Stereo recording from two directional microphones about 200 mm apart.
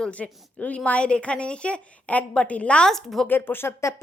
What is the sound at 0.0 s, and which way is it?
A woman's voice, 5° left (ahead or behind).